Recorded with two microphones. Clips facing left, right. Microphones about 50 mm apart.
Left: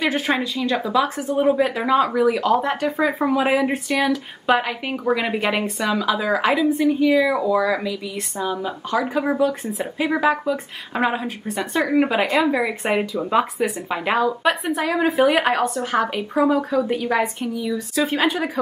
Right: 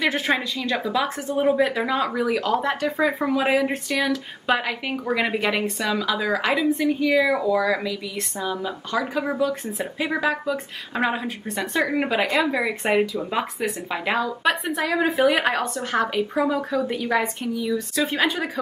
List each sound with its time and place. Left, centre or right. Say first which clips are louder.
0.0 s a woman's voice: left 1 dB; centre
5.1 s a woman's voice: even; centre
5.4 s a woman's voice: left 2 dB; centre